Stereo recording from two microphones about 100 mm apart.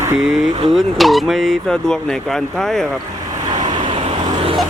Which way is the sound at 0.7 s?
Centre (ahead or behind).